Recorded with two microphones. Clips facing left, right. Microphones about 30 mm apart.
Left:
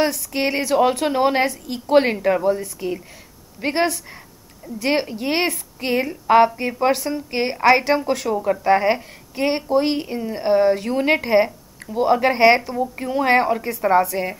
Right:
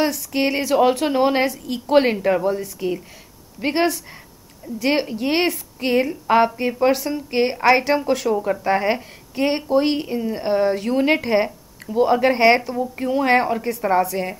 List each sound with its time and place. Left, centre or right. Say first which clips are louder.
0.0 s speech: even; centre